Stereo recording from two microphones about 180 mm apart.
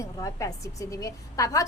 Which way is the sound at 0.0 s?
15° left (ahead or behind).